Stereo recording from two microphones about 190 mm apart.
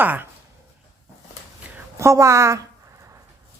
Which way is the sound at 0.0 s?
10° right (ahead or behind).